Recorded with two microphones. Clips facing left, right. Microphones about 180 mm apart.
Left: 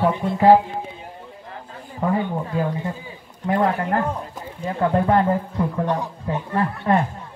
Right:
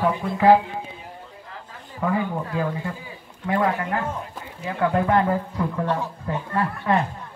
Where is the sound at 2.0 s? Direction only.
30° left (ahead or behind).